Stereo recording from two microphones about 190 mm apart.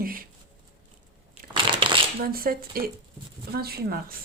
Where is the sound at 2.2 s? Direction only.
50° right (ahead or behind).